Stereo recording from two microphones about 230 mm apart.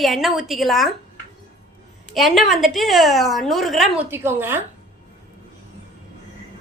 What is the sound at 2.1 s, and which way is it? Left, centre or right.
A woman's voice, centre.